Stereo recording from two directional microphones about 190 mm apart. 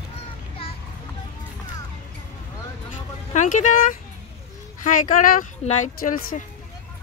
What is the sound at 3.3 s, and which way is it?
Speech, 40° left (ahead or behind).